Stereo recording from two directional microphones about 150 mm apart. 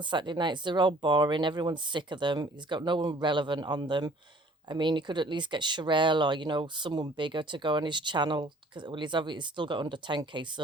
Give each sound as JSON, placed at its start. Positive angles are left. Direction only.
{"t": 0.0, "sound": "speech", "side_deg": -30}